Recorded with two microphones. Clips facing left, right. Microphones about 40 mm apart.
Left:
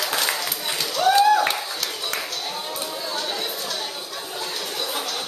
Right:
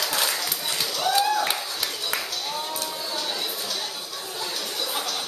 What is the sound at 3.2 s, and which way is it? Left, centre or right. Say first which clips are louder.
Chatter: left 2 dB; centre.